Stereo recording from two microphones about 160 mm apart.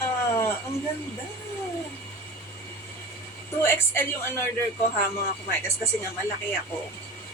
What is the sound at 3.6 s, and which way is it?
Speech, 15° left (ahead or behind).